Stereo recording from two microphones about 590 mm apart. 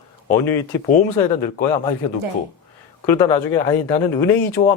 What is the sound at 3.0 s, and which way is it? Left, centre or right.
Speech, left.